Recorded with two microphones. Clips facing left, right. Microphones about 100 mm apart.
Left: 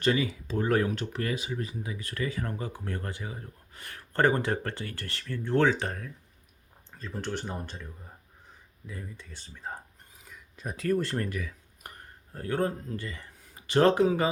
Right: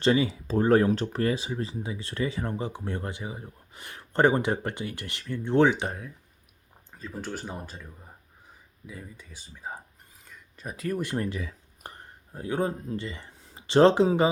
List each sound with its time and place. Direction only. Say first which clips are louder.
0.0 s speech: right 4 dB; 25° right (ahead or behind); by 7.9 s 5° right (ahead or behind)
8.9 s speech: left 1 dB; 5° right (ahead or behind)
11.3 s a sound: right 2 dB; 25° right (ahead or behind)
12.3 s speech: right 1 dB; 15° right (ahead or behind)